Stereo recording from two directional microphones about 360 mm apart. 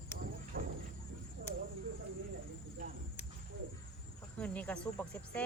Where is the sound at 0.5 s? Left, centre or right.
Right.